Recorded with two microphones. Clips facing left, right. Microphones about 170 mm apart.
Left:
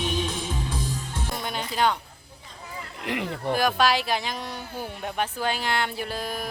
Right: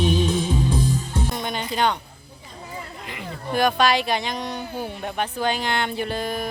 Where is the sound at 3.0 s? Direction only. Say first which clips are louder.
Left 7 dB; 70° left (ahead or behind).